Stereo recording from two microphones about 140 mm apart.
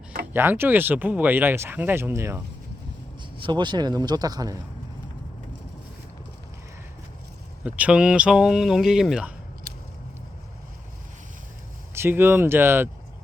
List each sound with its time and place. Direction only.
0.3 s speech: 15° right (ahead or behind)
3.4 s speech: 35° right (ahead or behind)
7.6 s speech: 10° right (ahead or behind)
11.9 s speech: 15° right (ahead or behind)